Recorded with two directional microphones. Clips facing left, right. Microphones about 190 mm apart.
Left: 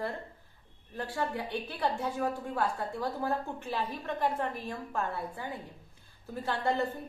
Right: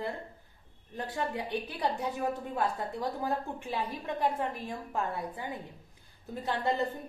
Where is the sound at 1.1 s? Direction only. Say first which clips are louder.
Even; 20° right (ahead or behind).